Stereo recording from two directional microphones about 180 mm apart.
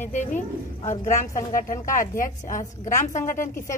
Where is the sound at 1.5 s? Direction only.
50° left (ahead or behind).